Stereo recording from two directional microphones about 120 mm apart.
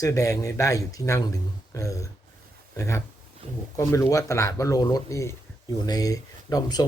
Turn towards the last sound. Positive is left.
turn(degrees=30)  # may be behind; listen again after turning